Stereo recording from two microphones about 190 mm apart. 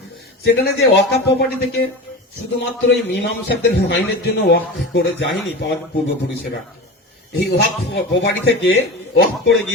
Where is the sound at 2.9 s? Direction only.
60° left (ahead or behind).